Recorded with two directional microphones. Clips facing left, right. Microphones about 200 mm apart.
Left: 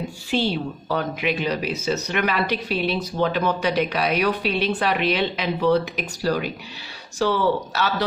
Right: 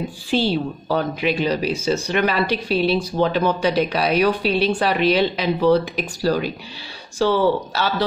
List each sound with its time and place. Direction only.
0.3 s a woman's voice: 35° right (ahead or behind)